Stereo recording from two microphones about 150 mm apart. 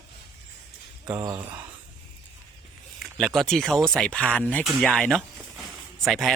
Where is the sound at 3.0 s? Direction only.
Centre (ahead or behind).